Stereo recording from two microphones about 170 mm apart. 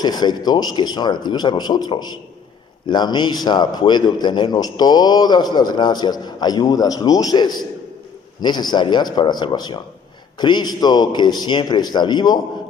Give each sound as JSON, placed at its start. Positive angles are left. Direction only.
{"t": 0.0, "sound": "a man's voice", "side_deg": 25}